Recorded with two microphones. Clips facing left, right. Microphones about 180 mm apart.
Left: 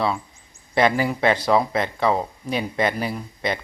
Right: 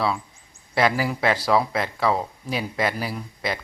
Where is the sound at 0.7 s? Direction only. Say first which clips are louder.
Left 2 dB; 5° right (ahead or behind).